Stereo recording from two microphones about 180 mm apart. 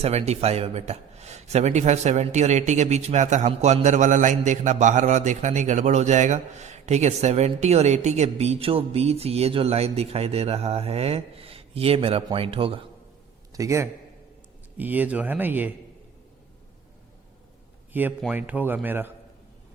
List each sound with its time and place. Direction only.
0.0 s a man's voice: 35° right (ahead or behind)
13.5 s a man's voice: 15° right (ahead or behind)
17.9 s speech: 10° right (ahead or behind)